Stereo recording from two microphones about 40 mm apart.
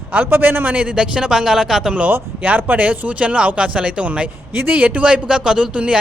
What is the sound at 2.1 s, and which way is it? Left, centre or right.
Speech, right.